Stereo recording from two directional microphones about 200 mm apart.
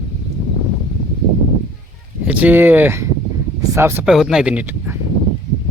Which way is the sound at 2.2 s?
5° right (ahead or behind).